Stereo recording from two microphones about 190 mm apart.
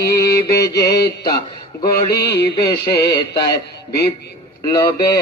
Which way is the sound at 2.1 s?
60° left (ahead or behind).